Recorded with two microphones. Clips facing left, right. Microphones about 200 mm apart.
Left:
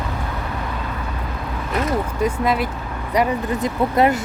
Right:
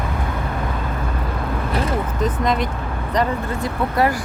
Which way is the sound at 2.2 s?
5° left (ahead or behind).